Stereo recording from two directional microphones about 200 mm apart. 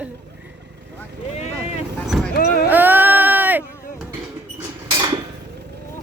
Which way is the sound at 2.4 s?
55° left (ahead or behind).